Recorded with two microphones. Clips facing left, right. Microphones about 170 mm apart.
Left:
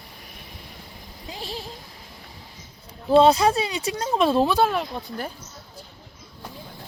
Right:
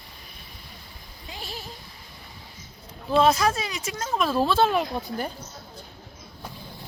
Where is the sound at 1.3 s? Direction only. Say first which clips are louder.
Left 4 dB; 35° left (ahead or behind).